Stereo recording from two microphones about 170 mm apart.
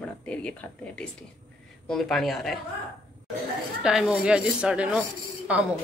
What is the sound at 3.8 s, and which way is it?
A woman's voice, 5° right (ahead or behind).